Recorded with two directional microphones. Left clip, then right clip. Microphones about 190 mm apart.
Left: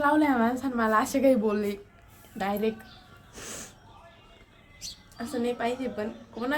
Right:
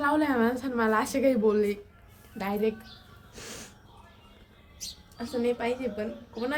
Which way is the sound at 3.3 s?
10° left (ahead or behind).